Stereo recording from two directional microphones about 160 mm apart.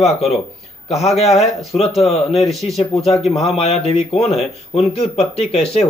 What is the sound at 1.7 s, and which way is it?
A man's voice, 40° left (ahead or behind).